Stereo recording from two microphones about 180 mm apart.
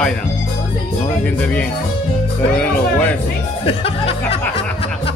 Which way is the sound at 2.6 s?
10° left (ahead or behind).